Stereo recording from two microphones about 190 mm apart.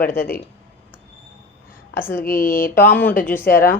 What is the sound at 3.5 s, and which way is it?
Speech, 50° left (ahead or behind).